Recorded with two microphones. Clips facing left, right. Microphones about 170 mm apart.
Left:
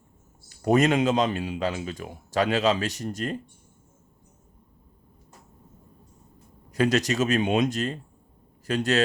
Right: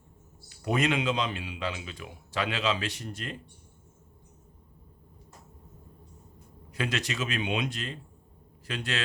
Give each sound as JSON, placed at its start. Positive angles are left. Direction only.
{"t": 0.4, "sound": "a man's voice", "side_deg": 45}
{"t": 6.7, "sound": "a man's voice", "side_deg": 40}